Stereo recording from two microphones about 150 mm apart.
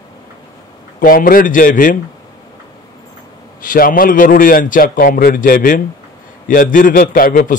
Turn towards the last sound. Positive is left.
turn(degrees=65)  # may be behind; listen again after turning